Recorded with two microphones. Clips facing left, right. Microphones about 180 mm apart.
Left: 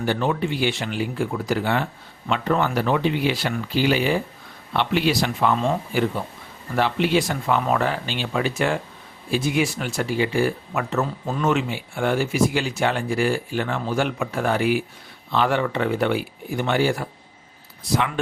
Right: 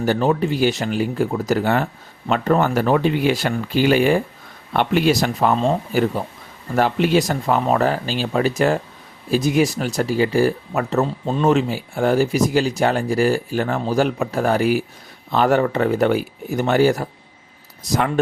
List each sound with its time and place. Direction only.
0.0 s speech: 40° right (ahead or behind)